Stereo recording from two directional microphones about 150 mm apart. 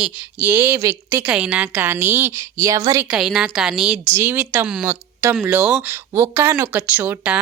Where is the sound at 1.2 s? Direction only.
5° right (ahead or behind).